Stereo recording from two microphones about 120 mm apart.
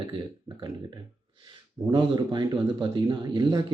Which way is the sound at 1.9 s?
40° right (ahead or behind).